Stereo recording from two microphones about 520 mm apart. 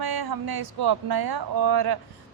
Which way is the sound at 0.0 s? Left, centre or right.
Right.